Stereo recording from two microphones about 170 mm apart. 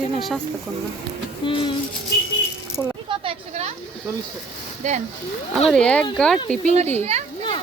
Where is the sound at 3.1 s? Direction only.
30° right (ahead or behind).